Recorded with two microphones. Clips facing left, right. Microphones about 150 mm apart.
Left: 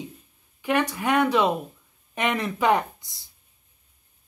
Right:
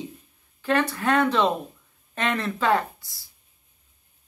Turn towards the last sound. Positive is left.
turn(degrees=20)  # may be behind; listen again after turning